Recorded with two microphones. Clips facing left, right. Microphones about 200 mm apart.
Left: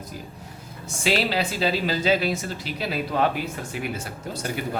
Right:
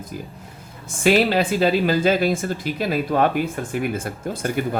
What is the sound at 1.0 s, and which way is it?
Speech, 50° right (ahead or behind).